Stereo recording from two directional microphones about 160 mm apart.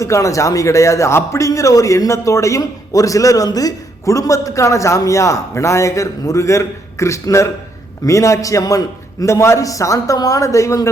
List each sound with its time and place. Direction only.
0.0 s a man's voice: 20° left (ahead or behind)